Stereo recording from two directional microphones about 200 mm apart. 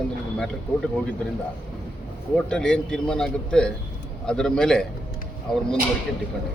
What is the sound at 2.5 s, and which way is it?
A man's voice, 5° left (ahead or behind).